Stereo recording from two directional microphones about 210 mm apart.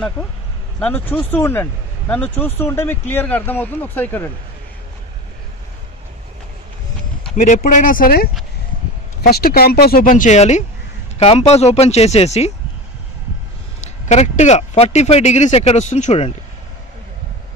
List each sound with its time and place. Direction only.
0.7 s speech: 10° left (ahead or behind)
7.3 s speech: 35° left (ahead or behind)
13.7 s speech: 35° left (ahead or behind)